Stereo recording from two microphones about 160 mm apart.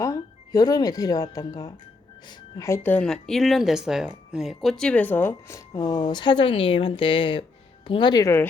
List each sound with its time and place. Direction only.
0.0 s speech: 20° left (ahead or behind)